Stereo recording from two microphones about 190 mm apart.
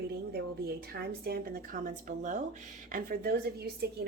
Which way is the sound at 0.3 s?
55° right (ahead or behind).